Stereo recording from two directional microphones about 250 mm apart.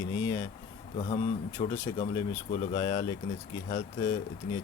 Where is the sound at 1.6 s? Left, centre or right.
Centre.